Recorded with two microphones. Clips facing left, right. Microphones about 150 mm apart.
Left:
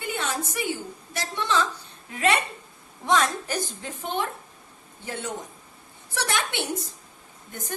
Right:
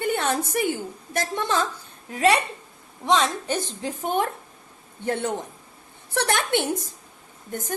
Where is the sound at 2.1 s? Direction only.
35° right (ahead or behind).